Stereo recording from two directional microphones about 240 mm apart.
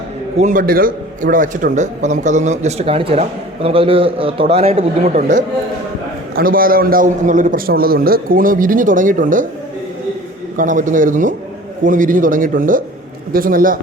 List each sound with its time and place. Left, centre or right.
0.3 s a man's voice: right
10.6 s a man's voice: right